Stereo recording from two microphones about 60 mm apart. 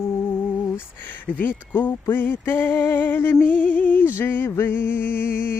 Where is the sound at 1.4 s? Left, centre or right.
Left.